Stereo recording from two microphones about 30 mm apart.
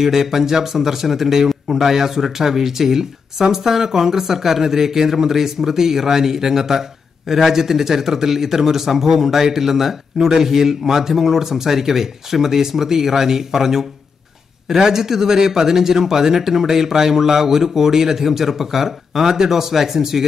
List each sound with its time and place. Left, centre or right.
0.0 s speech: centre